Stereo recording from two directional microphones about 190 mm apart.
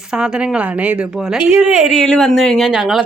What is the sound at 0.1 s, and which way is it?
Speech, 5° right (ahead or behind).